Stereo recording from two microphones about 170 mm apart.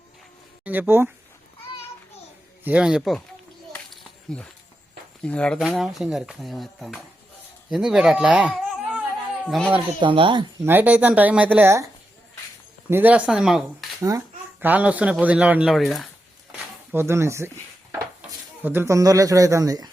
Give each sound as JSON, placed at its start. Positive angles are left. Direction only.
{"t": 0.6, "sound": "speech", "side_deg": -10}
{"t": 2.6, "sound": "speech", "side_deg": -5}
{"t": 3.7, "sound": "a sound", "side_deg": 5}
{"t": 5.2, "sound": "speech", "side_deg": 5}
{"t": 10.0, "sound": "speech", "side_deg": -30}
{"t": 10.6, "sound": "speech", "side_deg": -10}
{"t": 12.9, "sound": "speech", "side_deg": -10}
{"t": 16.5, "sound": "a sound", "side_deg": -10}
{"t": 18.2, "sound": "speech", "side_deg": -10}